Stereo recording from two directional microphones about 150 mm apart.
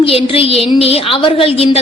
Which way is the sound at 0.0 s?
40° left (ahead or behind).